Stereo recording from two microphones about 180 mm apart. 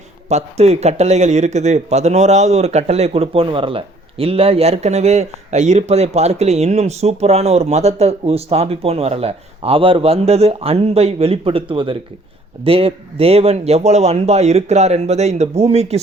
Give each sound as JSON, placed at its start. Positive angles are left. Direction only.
{"t": 0.3, "sound": "speech", "side_deg": -35}